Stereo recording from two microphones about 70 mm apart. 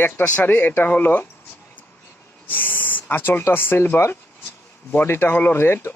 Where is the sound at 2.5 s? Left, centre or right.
Left.